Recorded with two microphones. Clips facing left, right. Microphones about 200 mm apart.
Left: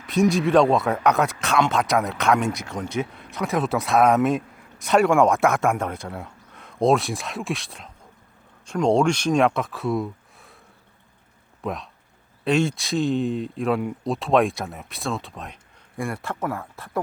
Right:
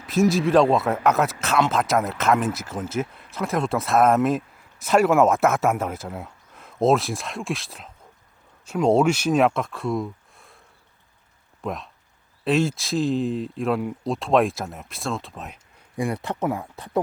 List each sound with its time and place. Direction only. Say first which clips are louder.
0.0 s speech: even; centre (ahead or behind)
11.6 s speech: left 1 dB; centre (ahead or behind)
16.0 s speech: right 3 dB; 20° right (ahead or behind)